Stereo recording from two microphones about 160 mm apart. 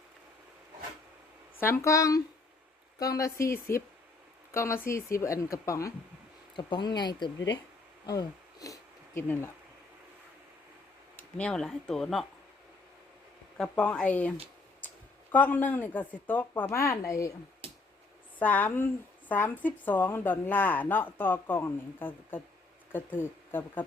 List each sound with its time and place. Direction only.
1.5 s speech: 15° left (ahead or behind)
4.5 s speech: 15° left (ahead or behind)
8.0 s a sound: 25° left (ahead or behind)
11.2 s speech: 5° left (ahead or behind)
13.6 s a woman's voice: 5° left (ahead or behind)
18.3 s a woman's voice: 10° left (ahead or behind)